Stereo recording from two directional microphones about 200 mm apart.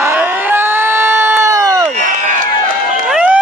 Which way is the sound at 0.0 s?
10° right (ahead or behind).